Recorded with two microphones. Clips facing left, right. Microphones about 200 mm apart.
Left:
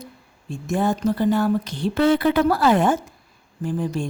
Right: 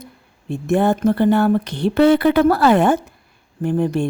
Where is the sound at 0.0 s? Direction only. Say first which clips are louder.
Right 1 dB; 60° right (ahead or behind).